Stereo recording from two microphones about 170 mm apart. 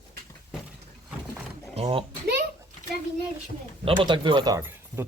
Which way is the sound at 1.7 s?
35° right (ahead or behind).